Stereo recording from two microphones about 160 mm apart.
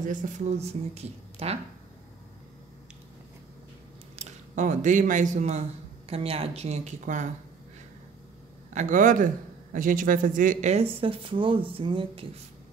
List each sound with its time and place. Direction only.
0.0 s speech: 55° right (ahead or behind)
4.2 s a man's voice: 50° right (ahead or behind)
8.7 s a man's voice: 55° right (ahead or behind)
11.0 s speech: 35° right (ahead or behind)